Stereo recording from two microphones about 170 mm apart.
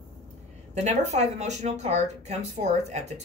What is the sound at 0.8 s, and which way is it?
Speech, 40° right (ahead or behind).